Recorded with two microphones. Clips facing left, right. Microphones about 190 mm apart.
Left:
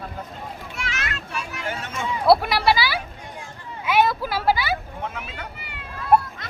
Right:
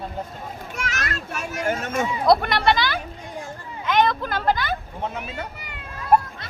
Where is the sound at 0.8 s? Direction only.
40° right (ahead or behind).